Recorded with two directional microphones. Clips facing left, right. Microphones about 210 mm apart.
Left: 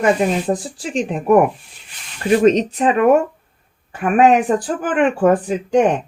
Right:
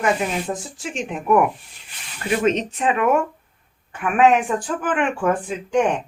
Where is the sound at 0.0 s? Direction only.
35° left (ahead or behind).